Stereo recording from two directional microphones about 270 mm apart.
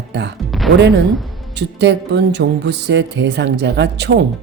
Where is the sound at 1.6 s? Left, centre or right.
Right.